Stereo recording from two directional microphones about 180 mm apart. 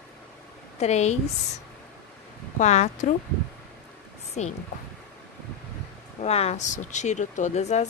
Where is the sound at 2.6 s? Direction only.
40° left (ahead or behind).